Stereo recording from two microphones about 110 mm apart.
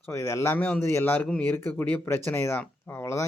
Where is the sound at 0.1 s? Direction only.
25° left (ahead or behind).